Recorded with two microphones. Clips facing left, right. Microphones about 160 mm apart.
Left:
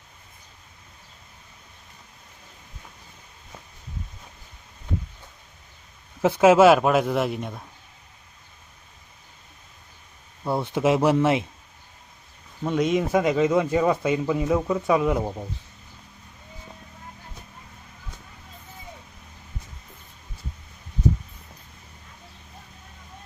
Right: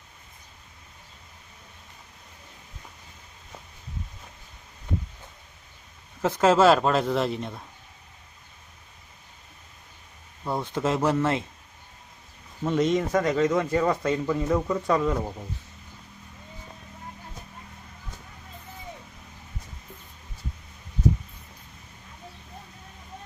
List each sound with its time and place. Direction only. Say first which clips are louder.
6.2 s speech: left 4 dB; 10° left (ahead or behind)
10.4 s speech: left 4 dB; 10° left (ahead or behind)
12.6 s speech: left 1 dB; centre (ahead or behind)